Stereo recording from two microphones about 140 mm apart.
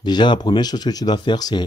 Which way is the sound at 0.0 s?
30° left (ahead or behind).